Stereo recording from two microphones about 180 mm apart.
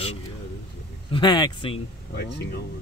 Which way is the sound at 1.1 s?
25° left (ahead or behind).